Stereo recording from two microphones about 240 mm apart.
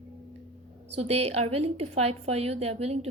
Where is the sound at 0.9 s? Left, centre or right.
Right.